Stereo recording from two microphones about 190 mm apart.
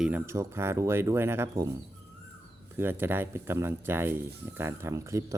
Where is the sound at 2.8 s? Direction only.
10° right (ahead or behind).